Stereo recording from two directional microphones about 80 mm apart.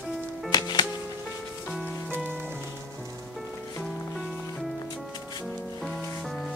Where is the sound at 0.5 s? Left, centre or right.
Left.